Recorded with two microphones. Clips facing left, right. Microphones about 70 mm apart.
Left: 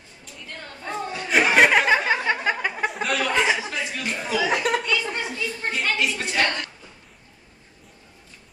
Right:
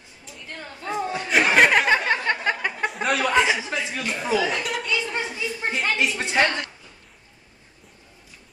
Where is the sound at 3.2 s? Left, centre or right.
Centre.